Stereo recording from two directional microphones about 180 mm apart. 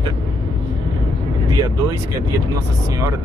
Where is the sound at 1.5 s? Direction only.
20° right (ahead or behind).